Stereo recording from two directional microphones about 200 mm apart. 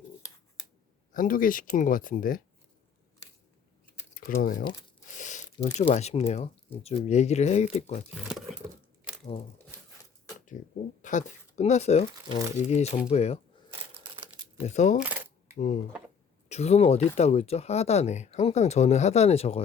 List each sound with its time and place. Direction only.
1.1 s speech: 45° left (ahead or behind)
4.1 s speech: 45° left (ahead or behind)
4.6 s crumpling: 15° left (ahead or behind)
5.0 s speech: 40° left (ahead or behind)
8.1 s speech: centre (ahead or behind)
11.0 s speech: 40° left (ahead or behind)
14.7 s speech: 35° left (ahead or behind)
15.0 s camera: 10° right (ahead or behind)
15.5 s speech: 40° left (ahead or behind)